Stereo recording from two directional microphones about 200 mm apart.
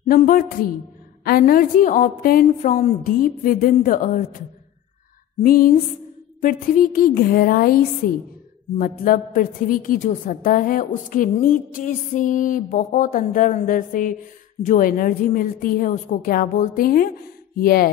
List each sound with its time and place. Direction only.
0.0 s a woman's voice: 40° left (ahead or behind)